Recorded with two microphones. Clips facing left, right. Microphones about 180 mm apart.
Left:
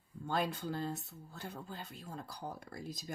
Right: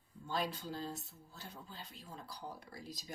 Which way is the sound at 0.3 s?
55° left (ahead or behind).